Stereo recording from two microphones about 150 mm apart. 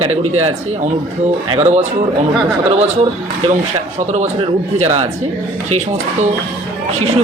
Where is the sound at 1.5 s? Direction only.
40° right (ahead or behind).